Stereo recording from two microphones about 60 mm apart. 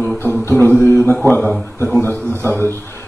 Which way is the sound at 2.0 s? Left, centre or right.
Left.